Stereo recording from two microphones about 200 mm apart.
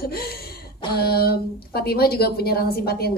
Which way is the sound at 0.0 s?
50° left (ahead or behind).